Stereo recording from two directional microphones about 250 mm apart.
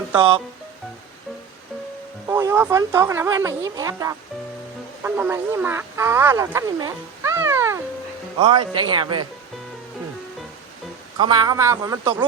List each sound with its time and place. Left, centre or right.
2.2 s speech: centre
11.2 s speech: centre